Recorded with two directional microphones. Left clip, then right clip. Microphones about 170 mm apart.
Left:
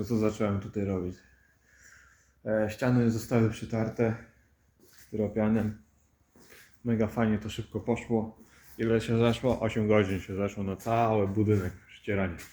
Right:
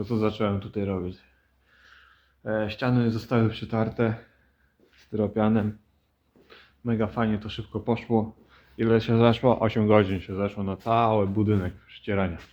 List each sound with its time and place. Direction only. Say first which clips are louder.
0.0 s speech: right 3 dB; 10° right (ahead or behind)
2.4 s speech: right 1 dB; 5° right (ahead or behind)
3.2 s speech: right 3 dB; 15° right (ahead or behind)
5.1 s speech: right 4 dB; 30° right (ahead or behind)
6.8 s speech: right 2 dB; 5° right (ahead or behind)
7.1 s speech: right 2 dB; 10° left (ahead or behind)
7.9 s speech: right 4 dB; 35° right (ahead or behind)
9.6 s speech: right 5 dB; 35° right (ahead or behind)
10.1 s speech: right 3 dB; 10° right (ahead or behind)